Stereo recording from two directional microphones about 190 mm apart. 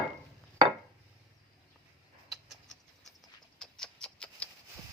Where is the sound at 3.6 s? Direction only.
5° left (ahead or behind).